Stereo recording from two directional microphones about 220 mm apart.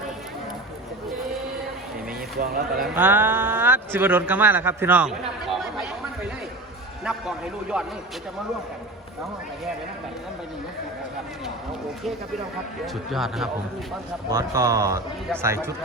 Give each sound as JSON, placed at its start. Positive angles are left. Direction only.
{"t": 2.4, "sound": "speech", "side_deg": -40}
{"t": 2.8, "sound": "speech", "side_deg": -10}
{"t": 7.0, "sound": "a man's voice", "side_deg": -5}
{"t": 12.8, "sound": "speech", "side_deg": 0}
{"t": 14.3, "sound": "speech", "side_deg": -15}